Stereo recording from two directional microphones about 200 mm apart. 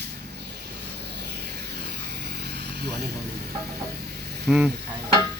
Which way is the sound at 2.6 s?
55° right (ahead or behind).